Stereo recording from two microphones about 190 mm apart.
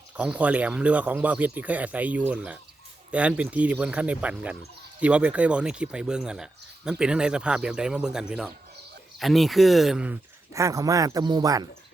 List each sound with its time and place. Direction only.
0.2 s speech: 5° right (ahead or behind)
10.5 s speech: 15° right (ahead or behind)